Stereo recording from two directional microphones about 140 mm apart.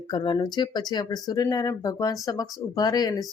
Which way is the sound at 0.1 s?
30° left (ahead or behind).